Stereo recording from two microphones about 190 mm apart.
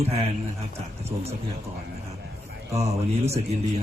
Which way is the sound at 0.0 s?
30° right (ahead or behind).